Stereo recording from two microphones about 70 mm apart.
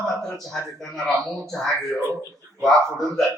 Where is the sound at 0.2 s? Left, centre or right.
Centre.